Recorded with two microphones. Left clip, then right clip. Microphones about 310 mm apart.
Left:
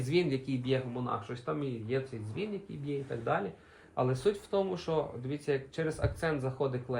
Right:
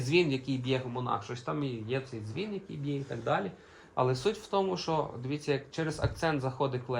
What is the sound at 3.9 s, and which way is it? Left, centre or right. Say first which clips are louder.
Speech: right 1 dB; centre.